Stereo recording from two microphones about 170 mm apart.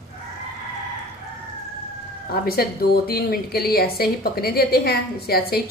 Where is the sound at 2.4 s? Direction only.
60° left (ahead or behind).